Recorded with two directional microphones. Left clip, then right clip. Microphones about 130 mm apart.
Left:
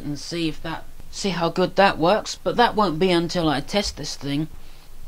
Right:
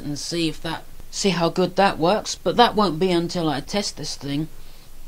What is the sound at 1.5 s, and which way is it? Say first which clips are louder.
Speech: left 1 dB; 5° left (ahead or behind).